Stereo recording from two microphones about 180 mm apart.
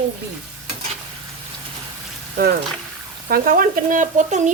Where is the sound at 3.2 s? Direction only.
50° right (ahead or behind).